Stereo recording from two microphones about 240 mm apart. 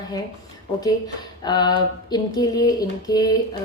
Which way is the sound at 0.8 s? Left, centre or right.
Centre.